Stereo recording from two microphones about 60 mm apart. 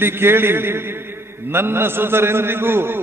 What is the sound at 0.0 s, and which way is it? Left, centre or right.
A man's voice, right.